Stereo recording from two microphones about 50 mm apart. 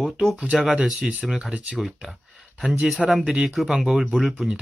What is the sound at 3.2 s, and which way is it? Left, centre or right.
Speech, centre.